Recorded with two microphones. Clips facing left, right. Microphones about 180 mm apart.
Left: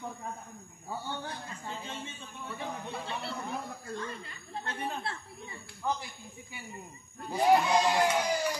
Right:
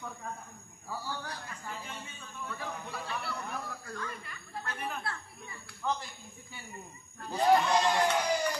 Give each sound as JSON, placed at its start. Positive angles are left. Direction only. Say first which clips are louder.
{"t": 0.8, "sound": "a man's voice", "louder": "left 1 dB", "side_deg": 25}
{"t": 5.8, "sound": "speech", "louder": "left 1 dB", "side_deg": 10}
{"t": 7.2, "sound": "speech", "louder": "left 1 dB", "side_deg": 10}